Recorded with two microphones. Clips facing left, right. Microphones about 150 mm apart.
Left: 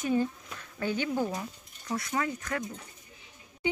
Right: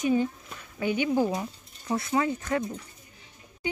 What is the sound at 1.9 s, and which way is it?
Speech, 25° right (ahead or behind).